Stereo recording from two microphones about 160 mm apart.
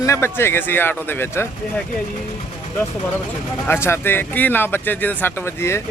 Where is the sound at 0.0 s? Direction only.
15° left (ahead or behind).